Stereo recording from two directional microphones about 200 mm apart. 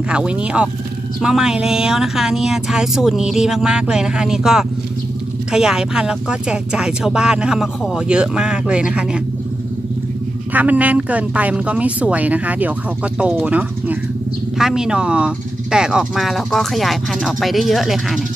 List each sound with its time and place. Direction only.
0.1 s speech: 5° right (ahead or behind)
10.5 s a woman's voice: 10° right (ahead or behind)